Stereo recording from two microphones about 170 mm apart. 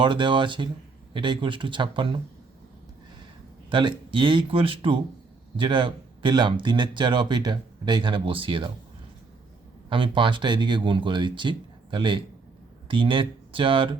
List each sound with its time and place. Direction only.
0.0 s speech: 30° right (ahead or behind)
3.7 s speech: 30° right (ahead or behind)
9.9 s speech: 30° right (ahead or behind)